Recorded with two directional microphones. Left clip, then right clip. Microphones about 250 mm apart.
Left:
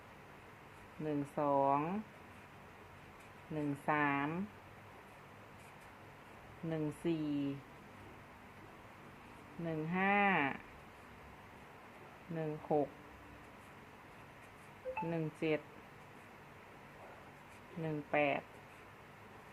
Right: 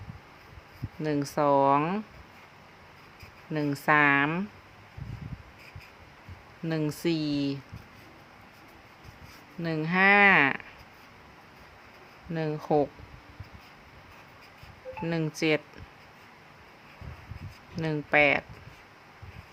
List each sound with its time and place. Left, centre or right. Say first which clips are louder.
1.0 s speech: right 11 dB; right
3.5 s speech: right 12 dB; right
6.7 s speech: right 9 dB; right
9.6 s speech: right 13 dB; right
12.3 s speech: right 9 dB; right
15.1 s speech: right 12 dB; right
17.8 s speech: right 12 dB; right